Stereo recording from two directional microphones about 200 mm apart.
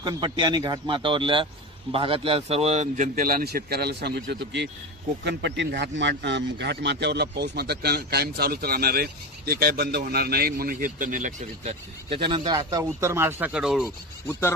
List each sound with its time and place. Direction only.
0.0 s a man's voice: 20° right (ahead or behind); by 11.7 s 40° right (ahead or behind)
12.1 s a man's voice: 25° right (ahead or behind); by 13.8 s 5° right (ahead or behind)